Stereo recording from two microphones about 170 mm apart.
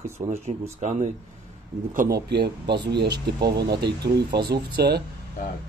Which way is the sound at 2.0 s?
70° right (ahead or behind).